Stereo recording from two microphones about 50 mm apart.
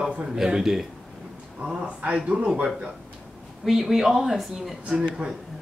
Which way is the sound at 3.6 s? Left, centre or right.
Centre.